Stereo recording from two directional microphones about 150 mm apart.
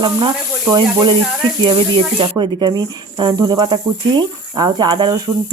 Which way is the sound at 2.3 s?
30° right (ahead or behind).